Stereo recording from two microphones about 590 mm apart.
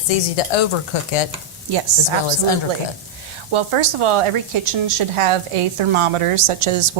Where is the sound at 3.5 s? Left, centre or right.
Right.